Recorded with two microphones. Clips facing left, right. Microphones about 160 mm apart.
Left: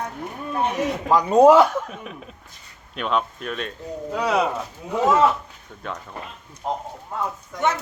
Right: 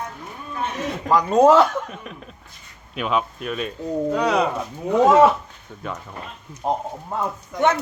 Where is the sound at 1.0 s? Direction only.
10° left (ahead or behind).